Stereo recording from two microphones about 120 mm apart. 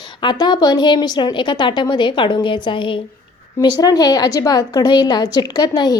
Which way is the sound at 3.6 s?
35° left (ahead or behind).